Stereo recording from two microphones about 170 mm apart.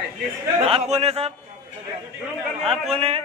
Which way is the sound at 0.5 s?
35° right (ahead or behind).